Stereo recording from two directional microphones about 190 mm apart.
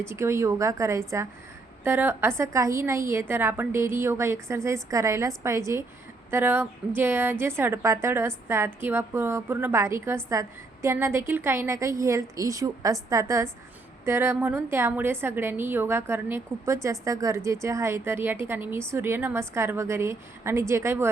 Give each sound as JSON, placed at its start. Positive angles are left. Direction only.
{"t": 0.0, "sound": "a woman's voice", "side_deg": -15}